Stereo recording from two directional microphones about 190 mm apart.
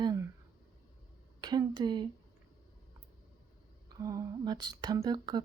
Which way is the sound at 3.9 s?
20° right (ahead or behind).